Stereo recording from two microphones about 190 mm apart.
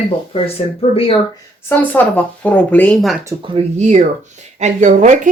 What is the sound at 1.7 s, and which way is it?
Speech, 10° left (ahead or behind).